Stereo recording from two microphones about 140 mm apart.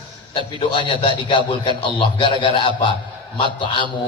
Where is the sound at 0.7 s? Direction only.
35° left (ahead or behind).